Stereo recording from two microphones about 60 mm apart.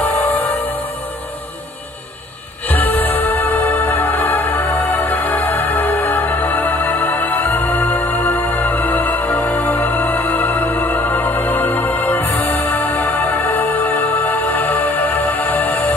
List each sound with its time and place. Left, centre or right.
0.0 s music: left
2.7 s music: left